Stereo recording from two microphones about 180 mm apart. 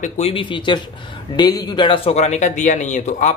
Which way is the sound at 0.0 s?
35° left (ahead or behind).